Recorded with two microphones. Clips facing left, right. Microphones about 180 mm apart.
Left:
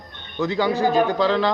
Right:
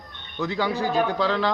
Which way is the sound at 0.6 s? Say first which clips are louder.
Left 4 dB; 15° left (ahead or behind).